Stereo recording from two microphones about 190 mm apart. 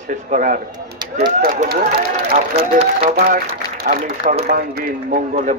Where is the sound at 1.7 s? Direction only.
55° right (ahead or behind).